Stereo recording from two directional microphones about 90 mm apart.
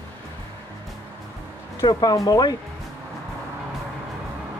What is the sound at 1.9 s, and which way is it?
Speech, 50° left (ahead or behind).